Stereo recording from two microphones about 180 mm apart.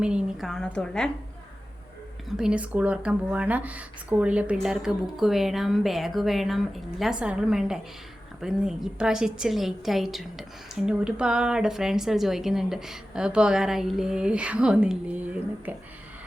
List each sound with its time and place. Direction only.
0.0 s speech: 5° right (ahead or behind)
2.3 s speech: 5° right (ahead or behind)